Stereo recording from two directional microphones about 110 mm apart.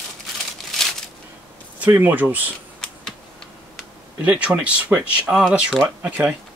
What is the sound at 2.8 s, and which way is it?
Computer keyboard, 5° left (ahead or behind).